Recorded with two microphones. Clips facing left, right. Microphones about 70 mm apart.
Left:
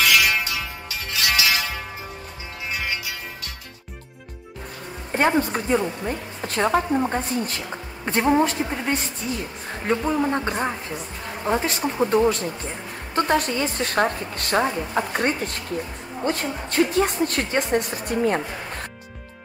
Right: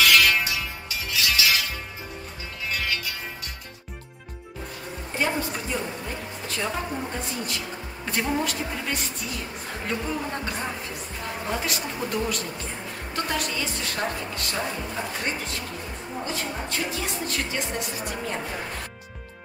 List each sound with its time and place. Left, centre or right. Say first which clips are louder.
0.0 s music: even; centre
0.8 s music: left 2 dB; left
2.7 s music: left 1 dB; left
5.1 s a woman's voice: left 7 dB; left